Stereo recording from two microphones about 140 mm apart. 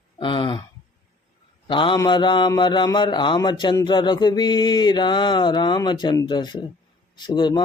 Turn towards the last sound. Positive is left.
turn(degrees=30)  # may be behind; listen again after turning